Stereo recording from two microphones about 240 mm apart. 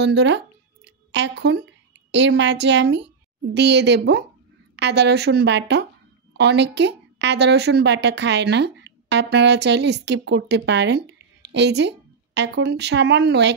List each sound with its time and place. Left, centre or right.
0.0 s a woman's voice: right
0.8 s a sound: right
2.0 s a woman's voice: right